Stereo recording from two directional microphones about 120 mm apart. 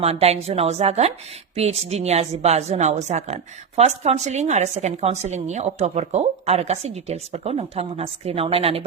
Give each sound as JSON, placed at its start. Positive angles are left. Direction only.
{"t": 0.0, "sound": "a woman's voice", "side_deg": -60}